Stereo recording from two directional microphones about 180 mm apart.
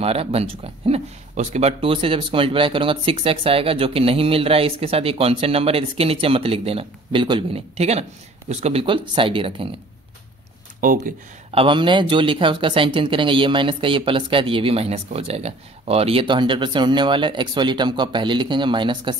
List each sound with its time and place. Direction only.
0.0 s speech: 35° right (ahead or behind)
10.8 s speech: 50° right (ahead or behind)
11.5 s speech: 30° right (ahead or behind)